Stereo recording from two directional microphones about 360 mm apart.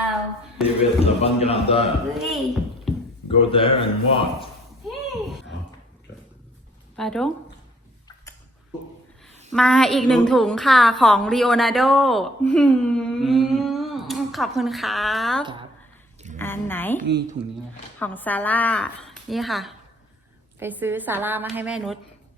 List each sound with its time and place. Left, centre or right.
1.0 s speech: centre
2.1 s a woman's voice: centre
3.2 s speech: centre
6.9 s a woman's voice: centre
9.5 s a woman's voice: centre
17.0 s a woman's voice: right
18.0 s a woman's voice: centre